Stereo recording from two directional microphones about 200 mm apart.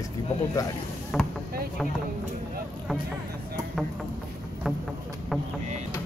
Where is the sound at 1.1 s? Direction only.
Centre (ahead or behind).